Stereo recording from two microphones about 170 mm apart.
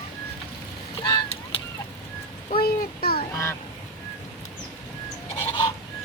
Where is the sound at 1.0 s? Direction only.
30° left (ahead or behind).